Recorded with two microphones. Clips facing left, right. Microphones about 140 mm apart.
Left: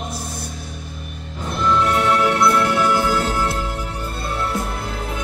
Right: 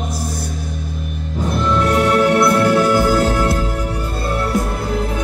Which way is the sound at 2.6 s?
40° right (ahead or behind).